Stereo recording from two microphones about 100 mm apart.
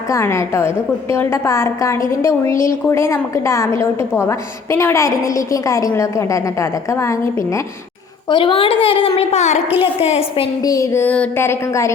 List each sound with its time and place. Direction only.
0.1 s a woman's voice: 30° left (ahead or behind)
8.3 s a woman's voice: 55° left (ahead or behind); by 10.4 s 85° left
10.6 s a woman's voice: 35° left (ahead or behind)
11.0 s a sound: 15° left (ahead or behind)
11.4 s a woman's voice: 30° left (ahead or behind)